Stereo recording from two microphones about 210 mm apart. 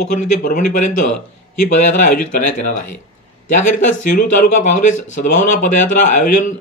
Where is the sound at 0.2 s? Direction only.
40° left (ahead or behind).